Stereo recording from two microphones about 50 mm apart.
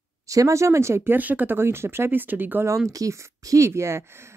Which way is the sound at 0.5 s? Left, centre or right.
Right.